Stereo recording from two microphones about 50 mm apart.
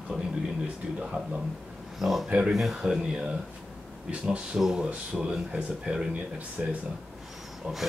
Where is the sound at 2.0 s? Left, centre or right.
Centre.